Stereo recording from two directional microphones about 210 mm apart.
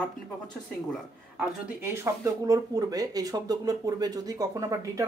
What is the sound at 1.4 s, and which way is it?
Speech, 10° right (ahead or behind).